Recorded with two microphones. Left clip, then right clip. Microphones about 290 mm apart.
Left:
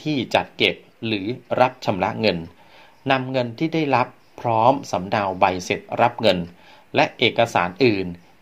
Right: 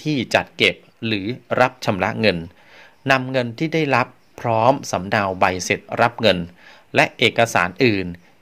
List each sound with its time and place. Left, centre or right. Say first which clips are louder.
0.0 s speech: right 2 dB; right
0.6 s speech: right 2 dB; right
1.6 s speech: right 1 dB; right